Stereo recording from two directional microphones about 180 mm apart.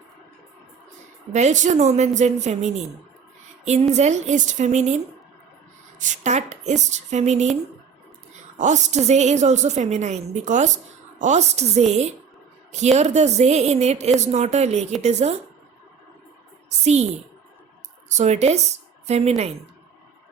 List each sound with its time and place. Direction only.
1.3 s a woman's voice: 40° right (ahead or behind)
3.9 s a woman's voice: 40° right (ahead or behind)
6.0 s a woman's voice: 40° right (ahead or behind)
16.6 s a woman's voice: 40° right (ahead or behind)
18.1 s speech: 40° right (ahead or behind)